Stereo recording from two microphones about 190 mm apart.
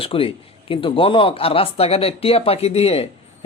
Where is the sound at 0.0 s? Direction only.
30° left (ahead or behind).